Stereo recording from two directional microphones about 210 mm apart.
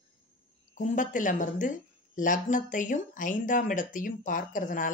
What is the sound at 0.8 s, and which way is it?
A woman's voice, 35° left (ahead or behind).